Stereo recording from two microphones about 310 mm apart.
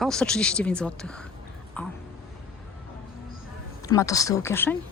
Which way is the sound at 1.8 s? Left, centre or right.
Centre.